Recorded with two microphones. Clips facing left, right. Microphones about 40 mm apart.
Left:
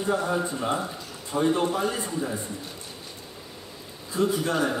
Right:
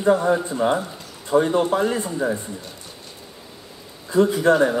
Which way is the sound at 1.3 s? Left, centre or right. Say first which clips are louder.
Right 6 dB; right.